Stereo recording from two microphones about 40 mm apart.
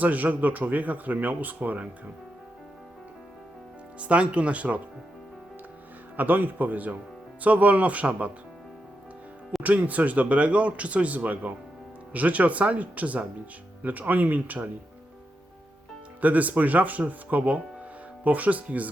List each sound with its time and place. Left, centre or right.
0.0 s speech: right
4.0 s speech: right
6.1 s speech: right
9.6 s speech: right
16.2 s speech: right